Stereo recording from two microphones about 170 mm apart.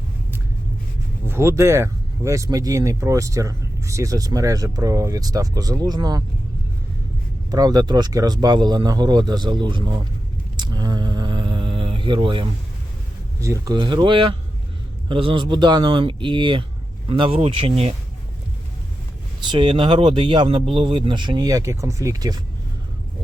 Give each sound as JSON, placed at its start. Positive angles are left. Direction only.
{"t": 1.3, "sound": "speech", "side_deg": -15}
{"t": 7.5, "sound": "speech", "side_deg": -20}
{"t": 10.6, "sound": "a sound", "side_deg": -25}
{"t": 13.4, "sound": "speech", "side_deg": -20}
{"t": 19.5, "sound": "speech", "side_deg": -30}